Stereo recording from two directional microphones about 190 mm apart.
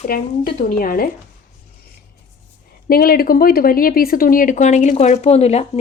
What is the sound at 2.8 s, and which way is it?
Speech, 50° left (ahead or behind).